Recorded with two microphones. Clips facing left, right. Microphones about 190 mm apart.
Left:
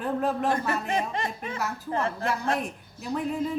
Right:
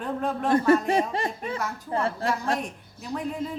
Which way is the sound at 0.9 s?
35° right (ahead or behind).